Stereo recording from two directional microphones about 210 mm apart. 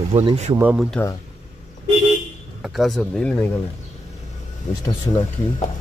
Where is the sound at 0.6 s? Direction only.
5° right (ahead or behind).